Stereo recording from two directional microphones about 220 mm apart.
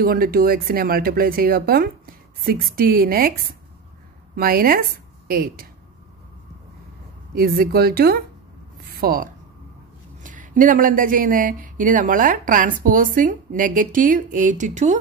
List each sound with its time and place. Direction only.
0.0 s speech: 40° right (ahead or behind)
4.4 s speech: 40° right (ahead or behind)
7.3 s speech: 40° right (ahead or behind)